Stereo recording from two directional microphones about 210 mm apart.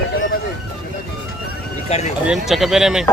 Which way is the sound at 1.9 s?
30° left (ahead or behind).